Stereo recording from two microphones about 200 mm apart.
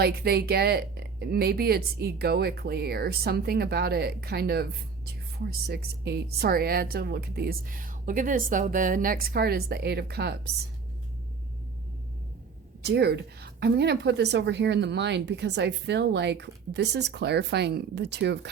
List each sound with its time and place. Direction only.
0.0 s speech: 55° right (ahead or behind)
12.8 s a woman's voice: 55° right (ahead or behind)